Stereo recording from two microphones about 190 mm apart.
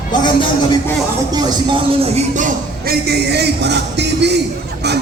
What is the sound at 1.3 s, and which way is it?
Music, 20° right (ahead or behind).